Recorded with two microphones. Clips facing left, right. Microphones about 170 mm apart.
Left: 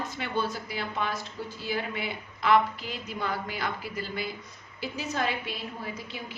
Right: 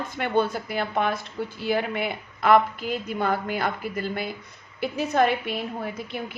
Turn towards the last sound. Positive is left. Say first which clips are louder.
# right 6 dB
turn(degrees=-55)  # may be behind; listen again after turning